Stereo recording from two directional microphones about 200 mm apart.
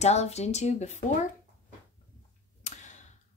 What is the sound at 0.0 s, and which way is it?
Speech, 35° left (ahead or behind).